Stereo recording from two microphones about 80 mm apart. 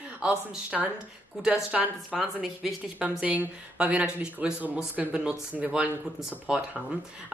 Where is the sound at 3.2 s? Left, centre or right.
Centre.